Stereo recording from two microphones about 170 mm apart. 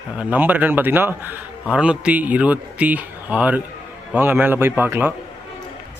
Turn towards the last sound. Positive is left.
turn(degrees=-10)  # may be behind; listen again after turning